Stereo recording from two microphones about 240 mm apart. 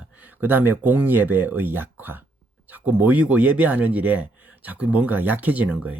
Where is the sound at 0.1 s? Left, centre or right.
Centre.